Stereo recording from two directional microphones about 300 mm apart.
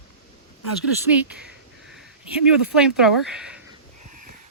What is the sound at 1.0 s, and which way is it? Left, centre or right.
Speech, centre.